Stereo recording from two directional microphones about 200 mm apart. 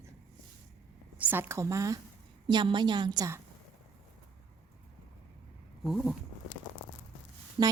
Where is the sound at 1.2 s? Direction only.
10° right (ahead or behind).